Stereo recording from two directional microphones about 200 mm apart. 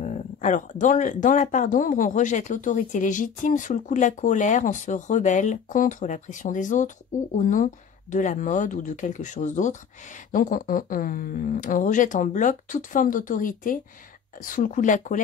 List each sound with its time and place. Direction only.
0.0 s speech: 40° left (ahead or behind)